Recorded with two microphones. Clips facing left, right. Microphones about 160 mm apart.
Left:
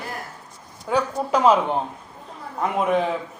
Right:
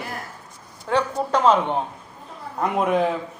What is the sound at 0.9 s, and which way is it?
A man's voice, 5° left (ahead or behind).